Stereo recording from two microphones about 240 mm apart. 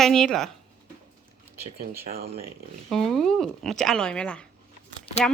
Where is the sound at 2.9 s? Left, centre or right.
Centre.